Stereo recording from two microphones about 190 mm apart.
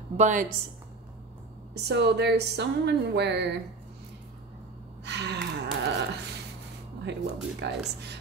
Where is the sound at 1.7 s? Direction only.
60° right (ahead or behind).